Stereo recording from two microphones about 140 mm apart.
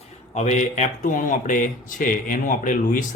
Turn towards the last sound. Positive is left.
turn(degrees=70)  # may be behind; listen again after turning